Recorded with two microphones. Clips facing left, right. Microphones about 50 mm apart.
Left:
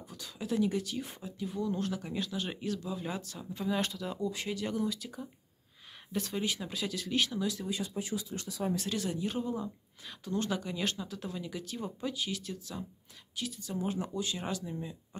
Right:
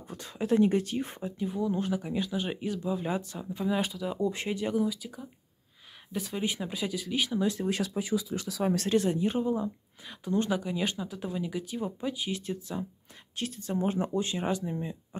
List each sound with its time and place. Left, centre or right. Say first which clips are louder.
0.1 s speech: right 7 dB; right
1.5 s speech: right 3 dB; centre
4.2 s speech: right 5 dB; right
4.6 s speech: right 6 dB; centre
6.4 s speech: right 3 dB; centre
7.3 s speech: right 5 dB; right
7.7 s speech: right 6 dB; right
8.8 s speech: right 8 dB; right
13.4 s speech: right 5 dB; right